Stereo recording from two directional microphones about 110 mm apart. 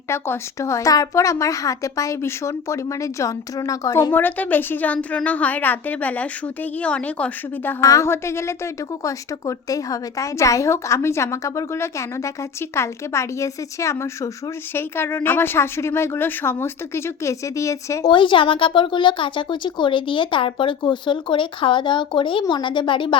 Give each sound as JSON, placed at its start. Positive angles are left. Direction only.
{"t": 0.1, "sound": "a woman's voice", "side_deg": 25}
{"t": 4.1, "sound": "a woman's voice", "side_deg": 15}
{"t": 7.8, "sound": "a woman's voice", "side_deg": 30}
{"t": 18.1, "sound": "a woman's voice", "side_deg": 50}